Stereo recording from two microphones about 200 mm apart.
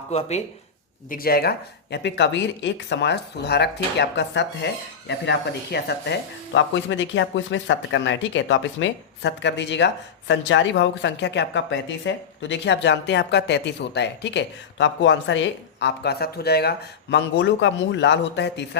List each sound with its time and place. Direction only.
0.1 s speech: 35° left (ahead or behind)
1.1 s speech: 50° left (ahead or behind)